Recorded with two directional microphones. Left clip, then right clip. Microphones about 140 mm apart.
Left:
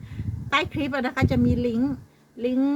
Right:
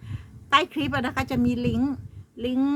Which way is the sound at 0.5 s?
40° right (ahead or behind).